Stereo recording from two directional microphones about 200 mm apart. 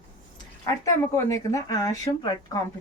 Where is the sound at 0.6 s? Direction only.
15° left (ahead or behind).